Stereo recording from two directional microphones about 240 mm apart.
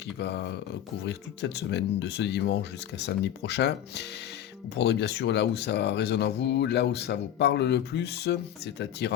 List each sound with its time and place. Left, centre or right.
0.2 s speech: left